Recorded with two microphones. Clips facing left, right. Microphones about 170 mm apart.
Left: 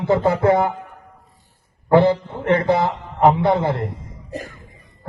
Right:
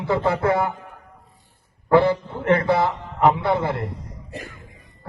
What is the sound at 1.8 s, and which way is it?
Speech, 25° left (ahead or behind).